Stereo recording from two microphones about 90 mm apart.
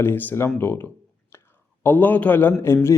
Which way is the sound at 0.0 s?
25° left (ahead or behind).